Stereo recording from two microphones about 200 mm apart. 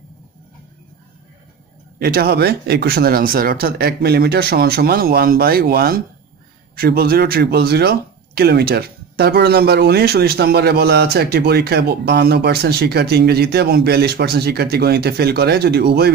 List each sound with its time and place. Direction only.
2.0 s speech: 50° right (ahead or behind)